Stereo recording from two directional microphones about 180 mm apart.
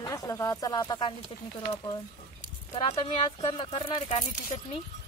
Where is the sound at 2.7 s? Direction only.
25° left (ahead or behind).